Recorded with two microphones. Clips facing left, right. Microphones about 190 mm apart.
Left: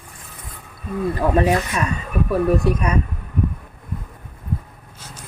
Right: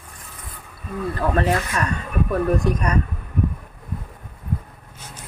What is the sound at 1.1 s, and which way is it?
Speech, 15° left (ahead or behind).